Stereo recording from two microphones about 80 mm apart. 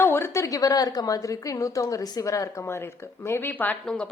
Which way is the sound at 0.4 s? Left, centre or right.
Left.